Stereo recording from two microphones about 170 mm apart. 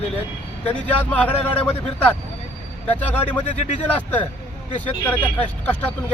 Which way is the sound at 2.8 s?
10° left (ahead or behind).